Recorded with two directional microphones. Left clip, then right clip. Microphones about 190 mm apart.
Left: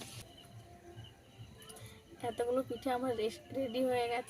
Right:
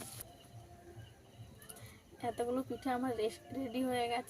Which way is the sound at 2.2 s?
10° right (ahead or behind).